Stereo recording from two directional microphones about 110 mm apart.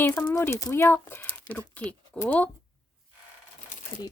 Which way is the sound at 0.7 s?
20° left (ahead or behind).